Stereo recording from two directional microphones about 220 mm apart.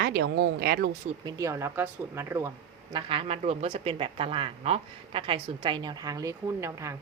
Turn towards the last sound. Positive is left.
turn(degrees=-15)  # may be behind; listen again after turning